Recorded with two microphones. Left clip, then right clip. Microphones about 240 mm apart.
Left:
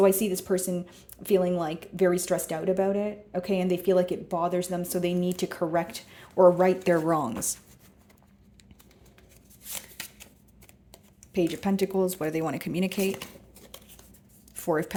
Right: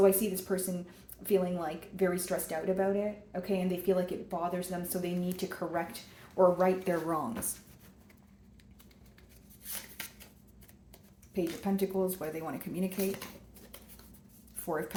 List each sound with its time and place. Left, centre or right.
0.0 s speech: left
9.6 s scissors: left
11.3 s speech: left
14.5 s speech: left